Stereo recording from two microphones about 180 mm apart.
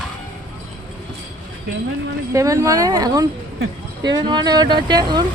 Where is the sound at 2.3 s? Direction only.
15° right (ahead or behind).